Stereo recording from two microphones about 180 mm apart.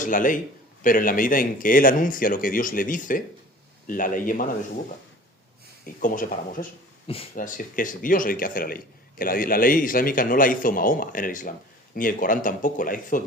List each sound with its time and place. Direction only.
0.0 s a man's voice: 45° left (ahead or behind)
5.8 s a man's voice: 50° left (ahead or behind)